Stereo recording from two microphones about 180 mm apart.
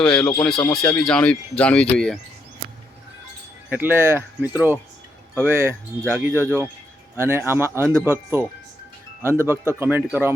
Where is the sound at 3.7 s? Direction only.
10° right (ahead or behind).